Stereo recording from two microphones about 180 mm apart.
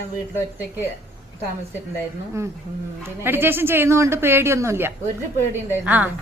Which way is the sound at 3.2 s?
10° right (ahead or behind).